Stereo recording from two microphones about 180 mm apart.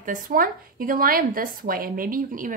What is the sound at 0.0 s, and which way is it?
A woman's voice, 50° right (ahead or behind).